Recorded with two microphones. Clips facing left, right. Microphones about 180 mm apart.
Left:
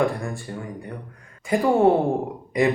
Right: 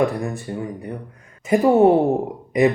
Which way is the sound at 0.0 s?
20° right (ahead or behind).